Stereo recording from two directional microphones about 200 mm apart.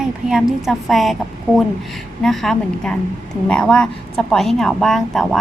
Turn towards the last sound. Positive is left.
turn(degrees=0)  # may be behind; listen again after turning